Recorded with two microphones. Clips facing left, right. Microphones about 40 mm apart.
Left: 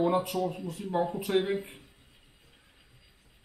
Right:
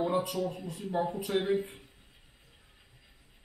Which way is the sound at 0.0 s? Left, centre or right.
Centre.